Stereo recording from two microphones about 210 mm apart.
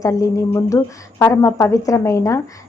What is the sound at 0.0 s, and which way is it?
A woman's voice, 15° left (ahead or behind).